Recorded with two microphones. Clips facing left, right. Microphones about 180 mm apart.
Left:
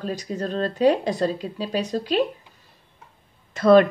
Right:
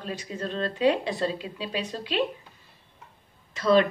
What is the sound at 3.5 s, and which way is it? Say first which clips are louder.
Speech: left 6 dB; 50° left (ahead or behind).